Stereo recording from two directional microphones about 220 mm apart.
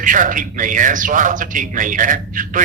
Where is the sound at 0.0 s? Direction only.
35° right (ahead or behind).